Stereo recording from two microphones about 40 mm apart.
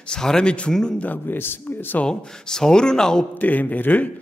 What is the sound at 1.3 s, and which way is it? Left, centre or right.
Speech, left.